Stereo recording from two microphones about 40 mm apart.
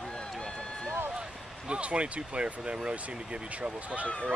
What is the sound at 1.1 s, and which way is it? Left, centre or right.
Speech, right.